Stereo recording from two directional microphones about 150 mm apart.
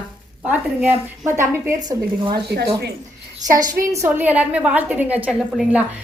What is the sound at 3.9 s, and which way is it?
A woman's voice, 15° right (ahead or behind).